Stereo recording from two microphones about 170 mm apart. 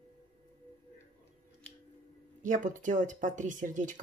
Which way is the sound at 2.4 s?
50° right (ahead or behind).